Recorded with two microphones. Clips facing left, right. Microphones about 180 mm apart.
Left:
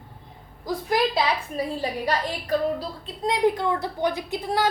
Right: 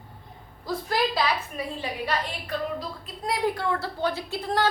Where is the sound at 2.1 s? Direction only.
35° left (ahead or behind).